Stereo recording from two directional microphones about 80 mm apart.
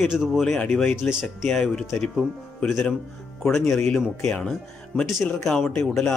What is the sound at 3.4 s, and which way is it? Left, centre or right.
Speech, centre.